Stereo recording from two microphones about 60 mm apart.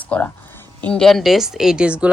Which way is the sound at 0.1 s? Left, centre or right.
Left.